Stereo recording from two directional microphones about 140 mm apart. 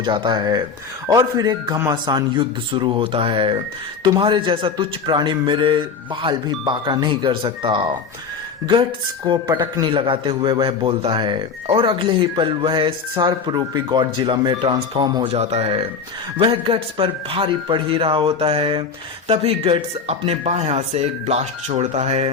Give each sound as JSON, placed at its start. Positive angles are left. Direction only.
{"t": 0.0, "sound": "a man's voice", "side_deg": -35}
{"t": 9.2, "sound": "a man's voice", "side_deg": -35}
{"t": 15.3, "sound": "a man's voice", "side_deg": -50}